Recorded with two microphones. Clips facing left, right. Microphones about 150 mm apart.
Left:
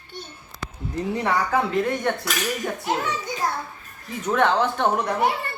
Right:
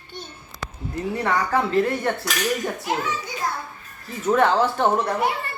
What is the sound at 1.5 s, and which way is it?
Speech, centre (ahead or behind).